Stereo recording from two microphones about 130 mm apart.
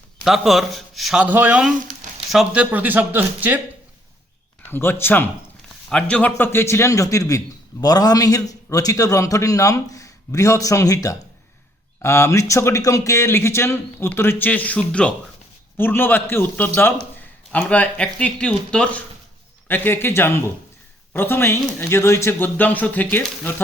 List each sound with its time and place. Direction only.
0.3 s speech: centre (ahead or behind)
4.7 s a man's voice: 15° left (ahead or behind)